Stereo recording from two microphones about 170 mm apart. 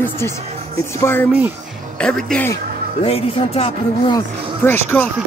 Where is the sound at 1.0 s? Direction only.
10° left (ahead or behind).